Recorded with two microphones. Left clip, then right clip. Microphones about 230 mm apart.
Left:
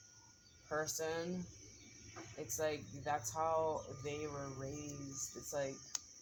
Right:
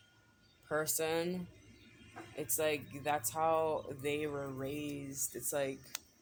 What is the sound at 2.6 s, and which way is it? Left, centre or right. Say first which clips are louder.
Speech: right 5 dB; right.